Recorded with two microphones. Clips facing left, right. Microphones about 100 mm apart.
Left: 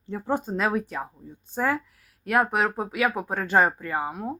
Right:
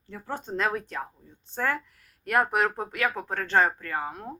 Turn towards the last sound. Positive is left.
turn(degrees=10)  # may be behind; listen again after turning